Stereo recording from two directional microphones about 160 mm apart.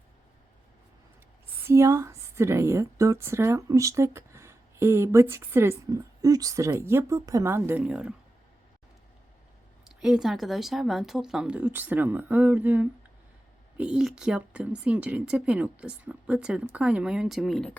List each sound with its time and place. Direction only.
1.6 s a woman's voice: 15° right (ahead or behind)
9.8 s a woman's voice: 5° right (ahead or behind)